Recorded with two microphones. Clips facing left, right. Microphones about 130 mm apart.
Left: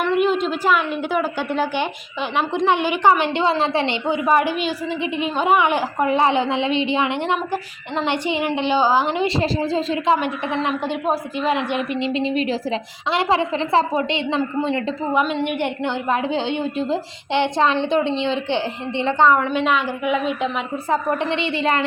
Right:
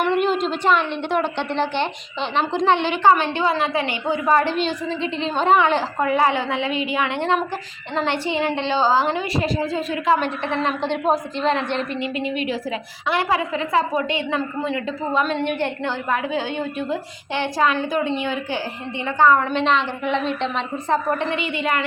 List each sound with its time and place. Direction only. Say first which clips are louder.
0.1 s a woman's voice: left 1 dB; centre (ahead or behind); by 3.9 s 30° left (ahead or behind)
4.0 s a woman's voice: right 1 dB; 20° left (ahead or behind)
10.2 s a woman's voice: even; 15° left (ahead or behind)
11.9 s a woman's voice: left 4 dB; 25° left (ahead or behind)
15.1 s a woman's voice: left 1 dB; 15° left (ahead or behind)
19.5 s a woman's voice: even; 10° left (ahead or behind)
21.3 s a woman's voice: left 2 dB; 30° left (ahead or behind)